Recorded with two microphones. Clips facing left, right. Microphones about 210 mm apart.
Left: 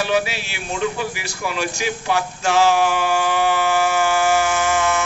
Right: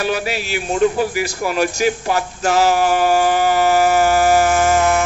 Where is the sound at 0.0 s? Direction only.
45° right (ahead or behind).